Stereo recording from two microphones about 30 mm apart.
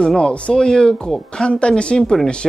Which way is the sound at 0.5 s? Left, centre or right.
Left.